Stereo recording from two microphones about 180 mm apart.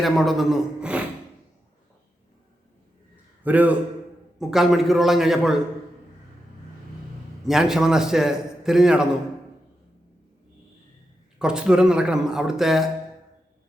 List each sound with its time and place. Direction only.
0.0 s a man's voice: centre (ahead or behind)
3.4 s a man's voice: 10° right (ahead or behind)
7.4 s a man's voice: centre (ahead or behind)
11.3 s a man's voice: 5° right (ahead or behind)